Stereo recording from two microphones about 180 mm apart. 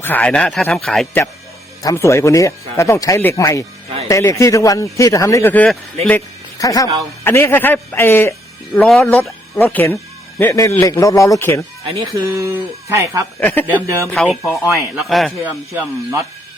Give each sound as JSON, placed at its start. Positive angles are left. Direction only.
{"t": 0.0, "sound": "speech", "side_deg": 10}
{"t": 1.8, "sound": "speech", "side_deg": 15}
{"t": 8.7, "sound": "speech", "side_deg": 0}
{"t": 11.9, "sound": "speech", "side_deg": -25}
{"t": 13.4, "sound": "speech", "side_deg": 10}
{"t": 13.8, "sound": "speech", "side_deg": -15}
{"t": 14.3, "sound": "speech", "side_deg": 0}
{"t": 15.4, "sound": "speech", "side_deg": -15}